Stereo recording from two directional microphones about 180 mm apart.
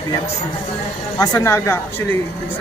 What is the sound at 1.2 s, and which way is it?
Speech, 20° left (ahead or behind).